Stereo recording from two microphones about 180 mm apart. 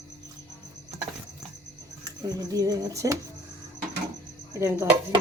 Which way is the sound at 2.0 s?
20° right (ahead or behind).